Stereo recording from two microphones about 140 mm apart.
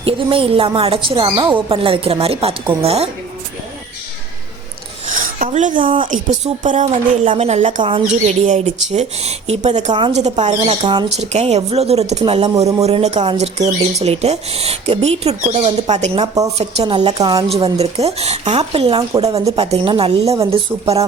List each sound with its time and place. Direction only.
0.0 s speech: 40° right (ahead or behind)
5.1 s filing: 70° right (ahead or behind)
6.0 s speech: 65° right (ahead or behind)
6.8 s speech: 45° right (ahead or behind)
7.8 s speech: 40° right (ahead or behind)
8.0 s speech: 55° right (ahead or behind)
10.4 s speech: 40° right (ahead or behind)
11.2 s speech: 50° right (ahead or behind)
16.2 s a woman's voice: 25° right (ahead or behind)
16.9 s speech: 40° right (ahead or behind)